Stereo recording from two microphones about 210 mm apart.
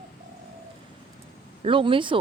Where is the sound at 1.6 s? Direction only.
25° right (ahead or behind).